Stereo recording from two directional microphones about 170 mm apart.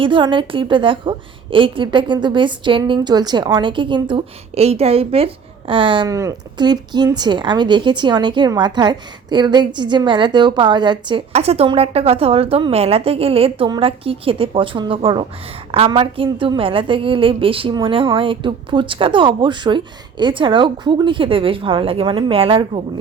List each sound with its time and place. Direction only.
0.0 s a woman's voice: 30° right (ahead or behind)